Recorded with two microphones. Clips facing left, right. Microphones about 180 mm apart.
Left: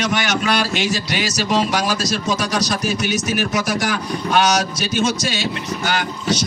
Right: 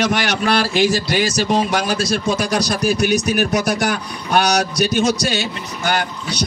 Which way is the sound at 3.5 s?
60° right (ahead or behind).